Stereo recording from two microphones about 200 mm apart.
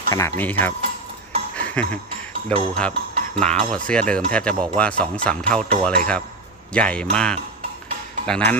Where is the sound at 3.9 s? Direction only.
5° left (ahead or behind).